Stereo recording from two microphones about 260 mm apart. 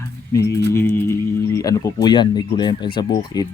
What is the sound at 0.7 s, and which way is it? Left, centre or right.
Speech, centre.